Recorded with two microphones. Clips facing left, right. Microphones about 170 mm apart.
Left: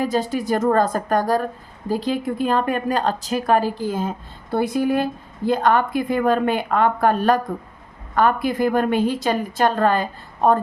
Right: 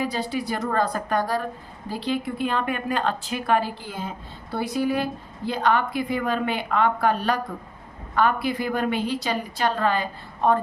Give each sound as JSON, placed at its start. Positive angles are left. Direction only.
{"t": 0.0, "sound": "a woman's voice", "side_deg": 45}